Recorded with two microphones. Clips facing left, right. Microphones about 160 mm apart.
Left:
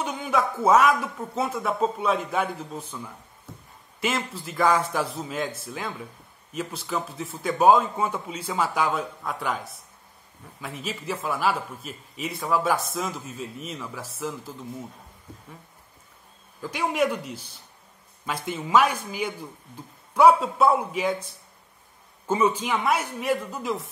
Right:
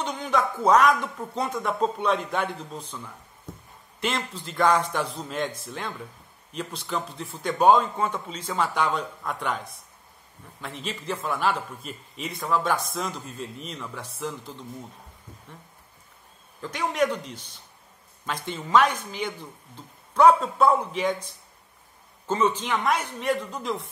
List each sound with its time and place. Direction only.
0.0 s a man's voice: 10° left (ahead or behind)
3.5 s a sound: 20° right (ahead or behind)
4.0 s a man's voice: 5° left (ahead or behind)
16.6 s speech: 10° left (ahead or behind)
22.3 s speech: 10° left (ahead or behind)